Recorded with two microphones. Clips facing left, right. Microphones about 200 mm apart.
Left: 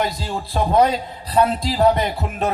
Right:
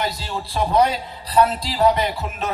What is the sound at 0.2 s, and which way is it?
A man's voice, 50° left (ahead or behind).